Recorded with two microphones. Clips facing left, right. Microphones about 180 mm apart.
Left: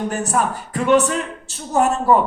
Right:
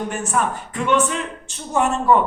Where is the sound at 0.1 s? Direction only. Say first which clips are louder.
Left 2 dB; 40° left (ahead or behind).